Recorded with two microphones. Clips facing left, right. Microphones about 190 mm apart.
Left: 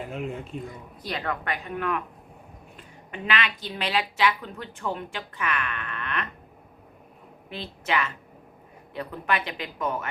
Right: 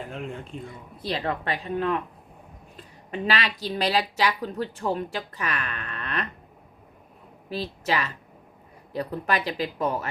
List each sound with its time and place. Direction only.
0.0 s speech: 5° left (ahead or behind)
1.0 s a woman's voice: 30° right (ahead or behind)
7.5 s a woman's voice: 35° right (ahead or behind)